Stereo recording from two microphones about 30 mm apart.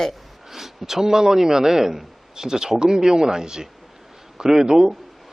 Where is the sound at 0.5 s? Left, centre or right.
Centre.